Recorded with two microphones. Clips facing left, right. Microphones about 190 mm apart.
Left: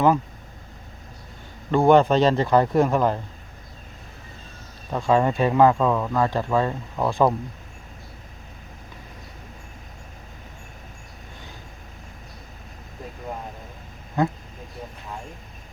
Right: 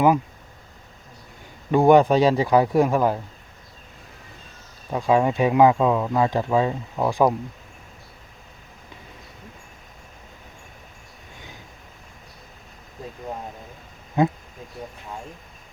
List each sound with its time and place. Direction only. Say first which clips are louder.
1.7 s speech: right 1 dB; 15° right (ahead or behind)
4.9 s speech: right 1 dB; 10° right (ahead or behind)
14.2 s speech: right 3 dB; 20° right (ahead or behind)